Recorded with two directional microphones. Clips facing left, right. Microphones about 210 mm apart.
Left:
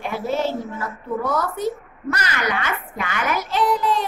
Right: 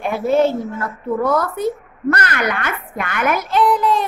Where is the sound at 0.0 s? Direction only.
55° right (ahead or behind).